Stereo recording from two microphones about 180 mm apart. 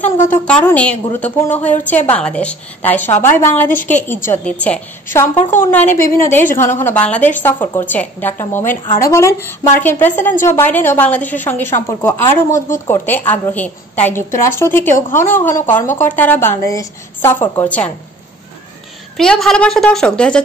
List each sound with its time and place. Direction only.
0.3 s a woman's voice: 10° left (ahead or behind)
19.1 s a woman's voice: centre (ahead or behind)